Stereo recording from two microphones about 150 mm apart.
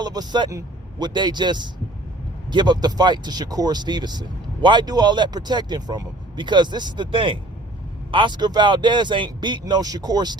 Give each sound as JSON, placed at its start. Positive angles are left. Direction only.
{"t": 0.0, "sound": "speech", "side_deg": -25}